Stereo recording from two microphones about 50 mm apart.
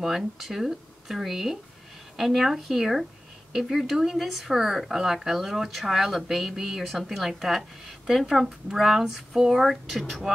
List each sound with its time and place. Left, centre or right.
0.0 s speech: centre